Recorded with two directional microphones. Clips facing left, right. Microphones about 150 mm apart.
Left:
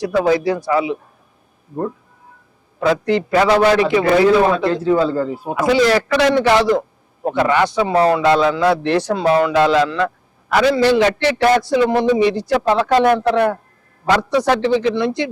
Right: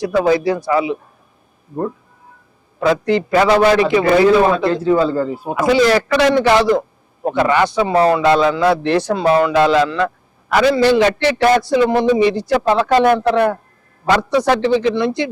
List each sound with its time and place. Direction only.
0.0 s a man's voice: 15° right (ahead or behind)
2.8 s a man's voice: 10° right (ahead or behind)
5.5 s a man's voice: 10° right (ahead or behind)